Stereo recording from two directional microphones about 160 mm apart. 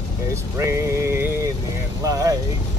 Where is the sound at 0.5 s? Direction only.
15° right (ahead or behind).